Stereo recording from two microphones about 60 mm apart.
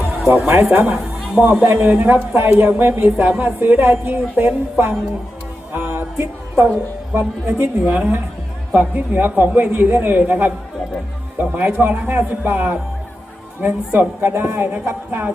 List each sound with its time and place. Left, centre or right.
0.3 s a woman's voice: right
5.7 s music: right
6.6 s a woman's voice: right